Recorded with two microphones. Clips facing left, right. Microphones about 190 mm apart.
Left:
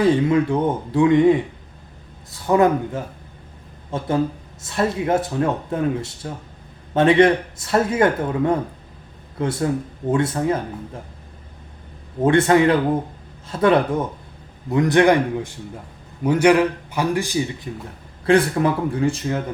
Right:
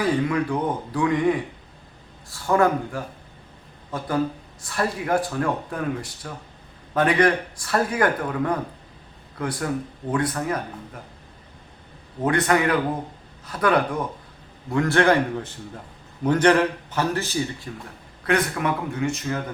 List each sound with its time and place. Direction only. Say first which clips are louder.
0.0 s speech: left 6 dB; 25° left (ahead or behind)
12.2 s a man's voice: left 6 dB; 25° left (ahead or behind)
18.3 s speech: left 6 dB; 30° left (ahead or behind)